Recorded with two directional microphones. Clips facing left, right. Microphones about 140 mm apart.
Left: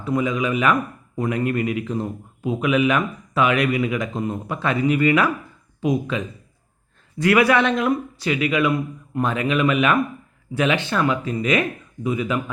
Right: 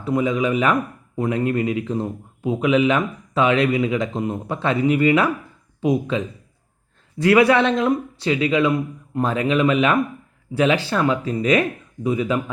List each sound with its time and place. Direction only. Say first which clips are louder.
0.0 s speech: right 2 dB; 30° right (ahead or behind)